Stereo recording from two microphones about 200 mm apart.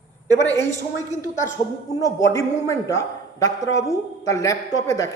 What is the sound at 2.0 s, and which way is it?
A man's voice, 15° left (ahead or behind).